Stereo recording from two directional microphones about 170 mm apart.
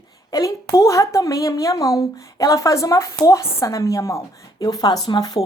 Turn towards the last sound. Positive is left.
turn(degrees=25)  # may be behind; listen again after turning